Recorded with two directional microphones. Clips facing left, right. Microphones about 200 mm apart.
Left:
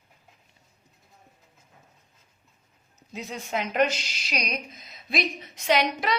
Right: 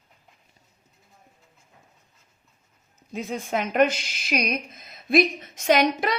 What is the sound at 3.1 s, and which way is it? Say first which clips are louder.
Speech: right 4 dB; 50° right (ahead or behind).